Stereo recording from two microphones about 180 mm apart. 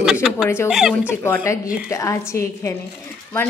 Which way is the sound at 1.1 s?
15° left (ahead or behind).